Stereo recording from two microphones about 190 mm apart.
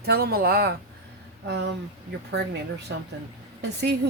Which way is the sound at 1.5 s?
65° right (ahead or behind).